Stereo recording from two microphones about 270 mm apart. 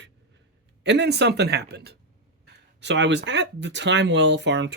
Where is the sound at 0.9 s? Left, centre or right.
Right.